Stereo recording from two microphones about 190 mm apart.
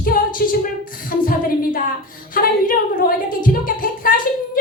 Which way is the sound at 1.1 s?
50° left (ahead or behind).